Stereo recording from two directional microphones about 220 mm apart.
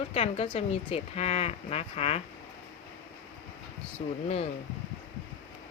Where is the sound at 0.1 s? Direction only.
25° left (ahead or behind).